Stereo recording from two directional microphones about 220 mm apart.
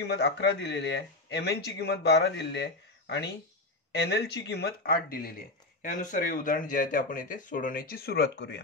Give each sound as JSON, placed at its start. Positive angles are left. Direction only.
{"t": 0.0, "sound": "speech", "side_deg": 50}